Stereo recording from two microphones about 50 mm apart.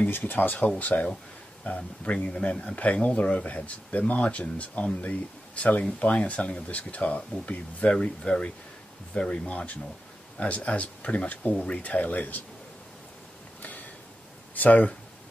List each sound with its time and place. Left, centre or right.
0.1 s speech: left
14.5 s speech: left